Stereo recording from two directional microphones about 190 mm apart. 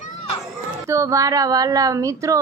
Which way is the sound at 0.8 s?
15° right (ahead or behind).